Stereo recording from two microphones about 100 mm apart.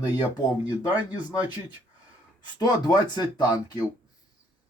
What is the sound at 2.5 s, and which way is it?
Speech, 45° left (ahead or behind).